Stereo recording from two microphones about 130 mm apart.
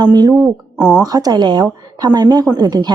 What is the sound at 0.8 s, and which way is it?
Speech, 10° right (ahead or behind).